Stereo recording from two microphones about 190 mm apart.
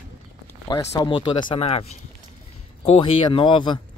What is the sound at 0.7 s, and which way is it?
Speech, 20° left (ahead or behind).